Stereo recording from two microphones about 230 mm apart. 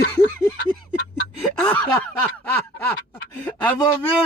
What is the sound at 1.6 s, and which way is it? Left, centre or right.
A man's voice, centre.